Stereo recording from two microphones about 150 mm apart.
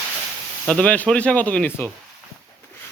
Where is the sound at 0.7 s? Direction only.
10° left (ahead or behind).